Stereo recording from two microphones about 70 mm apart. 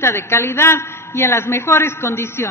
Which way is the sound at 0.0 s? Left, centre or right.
Left.